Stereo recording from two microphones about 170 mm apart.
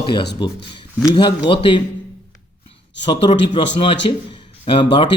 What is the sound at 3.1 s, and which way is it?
A man's voice, 30° left (ahead or behind).